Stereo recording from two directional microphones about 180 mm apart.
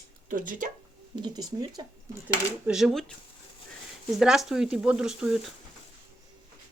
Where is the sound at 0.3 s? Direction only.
50° right (ahead or behind).